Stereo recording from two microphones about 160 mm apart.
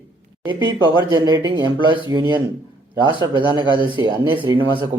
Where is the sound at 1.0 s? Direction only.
25° right (ahead or behind).